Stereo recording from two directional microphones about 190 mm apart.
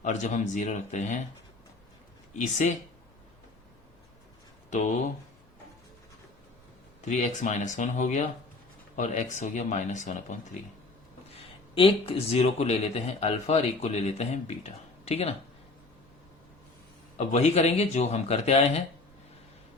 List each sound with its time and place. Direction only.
0.0 s speech: 40° left (ahead or behind)
2.3 s speech: 40° left (ahead or behind)
4.7 s speech: 40° left (ahead or behind)
7.0 s speech: 40° left (ahead or behind)
11.7 s speech: 30° left (ahead or behind)
17.2 s speech: 35° left (ahead or behind)